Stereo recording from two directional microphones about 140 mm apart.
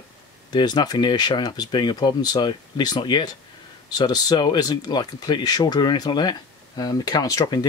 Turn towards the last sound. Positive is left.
turn(degrees=30)  # may be behind; listen again after turning